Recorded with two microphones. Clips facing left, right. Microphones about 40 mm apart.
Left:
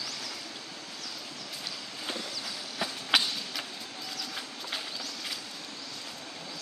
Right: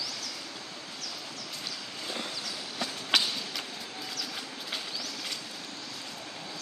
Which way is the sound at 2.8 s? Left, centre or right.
Centre.